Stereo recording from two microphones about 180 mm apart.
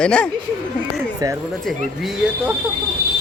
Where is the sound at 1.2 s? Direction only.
20° right (ahead or behind).